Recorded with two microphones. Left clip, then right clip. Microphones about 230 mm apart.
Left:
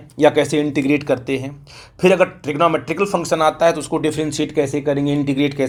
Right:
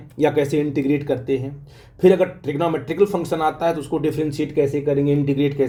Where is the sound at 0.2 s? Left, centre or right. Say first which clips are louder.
Left 4 dB; centre.